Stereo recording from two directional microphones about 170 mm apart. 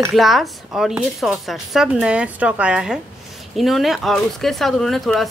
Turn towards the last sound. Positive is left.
turn(degrees=0)  # may be behind; listen again after turning